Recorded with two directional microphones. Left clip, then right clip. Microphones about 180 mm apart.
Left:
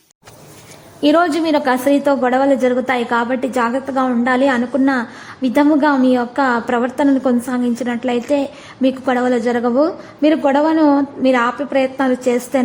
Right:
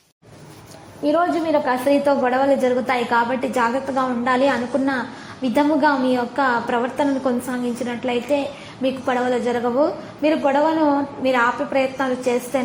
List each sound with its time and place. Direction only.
1.0 s a woman's voice: 35° left (ahead or behind)